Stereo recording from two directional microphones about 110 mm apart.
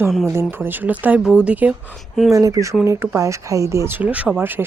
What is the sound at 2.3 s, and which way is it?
Speech, 30° right (ahead or behind).